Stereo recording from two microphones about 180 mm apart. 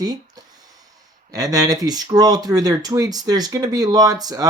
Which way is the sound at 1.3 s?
20° right (ahead or behind).